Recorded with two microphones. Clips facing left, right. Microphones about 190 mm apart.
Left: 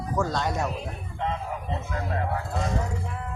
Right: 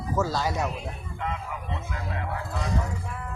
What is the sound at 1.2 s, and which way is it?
Music, 35° left (ahead or behind).